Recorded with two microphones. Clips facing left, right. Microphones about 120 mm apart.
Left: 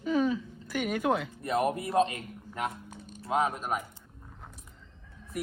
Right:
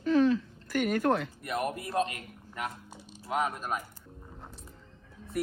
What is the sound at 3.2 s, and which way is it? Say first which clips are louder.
Speech: left 2 dB; 20° left (ahead or behind).